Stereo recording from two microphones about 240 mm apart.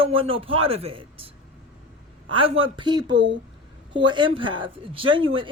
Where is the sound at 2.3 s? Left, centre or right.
Right.